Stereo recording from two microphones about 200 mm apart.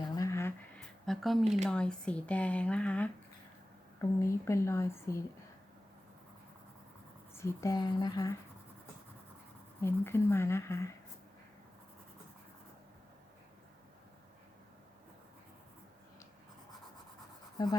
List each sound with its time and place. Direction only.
0.0 s a sound: 15° left (ahead or behind)
1.0 s speech: centre (ahead or behind)
4.2 s speech: 15° left (ahead or behind)
7.3 s speech: 15° left (ahead or behind)
9.8 s speech: 10° left (ahead or behind)